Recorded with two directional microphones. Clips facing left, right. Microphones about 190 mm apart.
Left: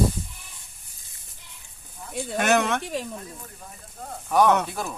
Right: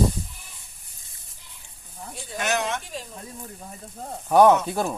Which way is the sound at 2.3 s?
55° left (ahead or behind).